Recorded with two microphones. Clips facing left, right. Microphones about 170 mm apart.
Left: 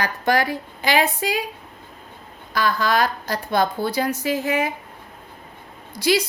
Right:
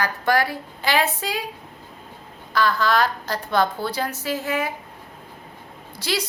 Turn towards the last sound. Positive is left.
turn(degrees=10)  # may be behind; listen again after turning